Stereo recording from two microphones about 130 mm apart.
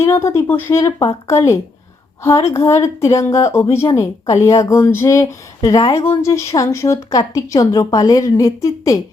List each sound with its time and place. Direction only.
0.0 s speech: 20° left (ahead or behind)